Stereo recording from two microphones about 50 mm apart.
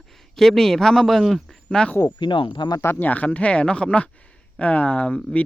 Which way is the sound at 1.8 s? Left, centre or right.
Centre.